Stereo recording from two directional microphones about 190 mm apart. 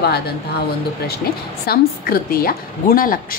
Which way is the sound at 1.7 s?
50° left (ahead or behind).